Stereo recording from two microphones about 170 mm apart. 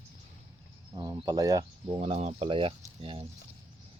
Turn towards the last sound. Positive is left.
turn(degrees=-30)  # may be behind; listen again after turning